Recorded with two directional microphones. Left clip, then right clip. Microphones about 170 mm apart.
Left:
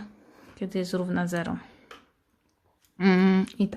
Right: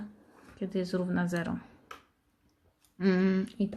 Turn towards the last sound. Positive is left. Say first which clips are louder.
# left 6 dB
turn(degrees=35)  # may be behind; listen again after turning